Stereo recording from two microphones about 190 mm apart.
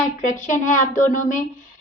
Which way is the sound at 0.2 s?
40° left (ahead or behind).